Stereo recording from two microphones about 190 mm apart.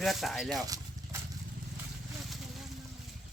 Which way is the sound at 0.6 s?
20° right (ahead or behind).